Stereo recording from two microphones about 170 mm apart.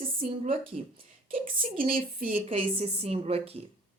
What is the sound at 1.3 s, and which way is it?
Speech, 55° right (ahead or behind).